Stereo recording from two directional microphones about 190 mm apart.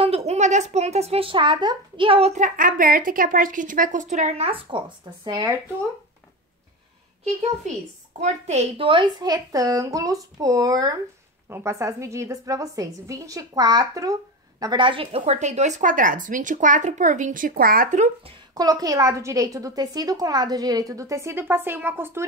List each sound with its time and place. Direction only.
0.0 s speech: 35° right (ahead or behind)
7.7 s a woman's voice: 40° right (ahead or behind)
18.5 s a woman's voice: 20° right (ahead or behind)